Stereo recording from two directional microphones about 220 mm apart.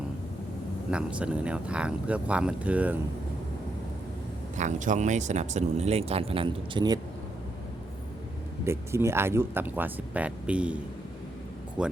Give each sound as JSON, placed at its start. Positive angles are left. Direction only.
{"t": 0.9, "sound": "speech", "side_deg": -5}
{"t": 4.5, "sound": "speech", "side_deg": -35}
{"t": 8.6, "sound": "speech", "side_deg": -10}
{"t": 11.8, "sound": "speech", "side_deg": -5}